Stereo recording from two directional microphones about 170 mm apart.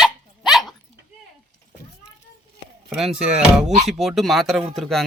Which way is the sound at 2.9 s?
5° right (ahead or behind).